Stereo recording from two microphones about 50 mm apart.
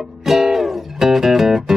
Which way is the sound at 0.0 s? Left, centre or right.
Centre.